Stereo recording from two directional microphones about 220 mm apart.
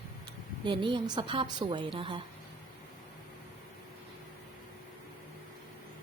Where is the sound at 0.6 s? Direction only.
20° right (ahead or behind).